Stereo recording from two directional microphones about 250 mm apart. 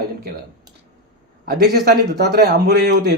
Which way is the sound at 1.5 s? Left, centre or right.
Right.